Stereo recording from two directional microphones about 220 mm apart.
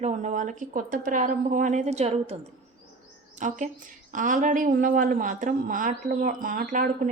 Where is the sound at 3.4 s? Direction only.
35° right (ahead or behind).